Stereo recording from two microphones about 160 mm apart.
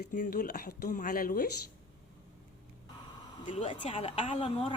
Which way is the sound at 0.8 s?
55° left (ahead or behind).